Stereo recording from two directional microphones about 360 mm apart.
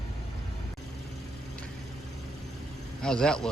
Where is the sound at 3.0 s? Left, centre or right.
Centre.